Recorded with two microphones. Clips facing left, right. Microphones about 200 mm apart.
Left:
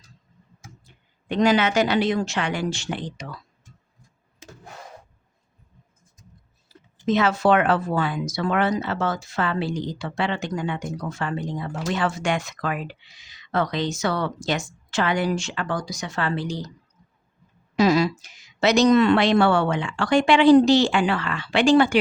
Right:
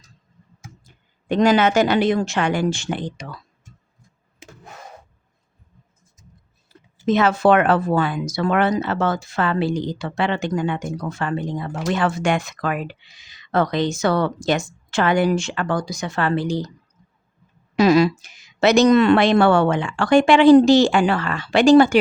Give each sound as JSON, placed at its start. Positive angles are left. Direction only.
{"t": 0.9, "sound": "a woman's voice", "side_deg": -45}
{"t": 7.1, "sound": "speech", "side_deg": -50}
{"t": 17.7, "sound": "a woman's voice", "side_deg": -65}